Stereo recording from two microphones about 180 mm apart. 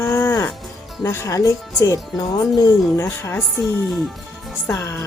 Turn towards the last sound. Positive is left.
turn(degrees=15)  # may be behind; listen again after turning